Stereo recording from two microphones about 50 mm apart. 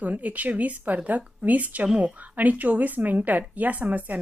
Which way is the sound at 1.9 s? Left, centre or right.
Centre.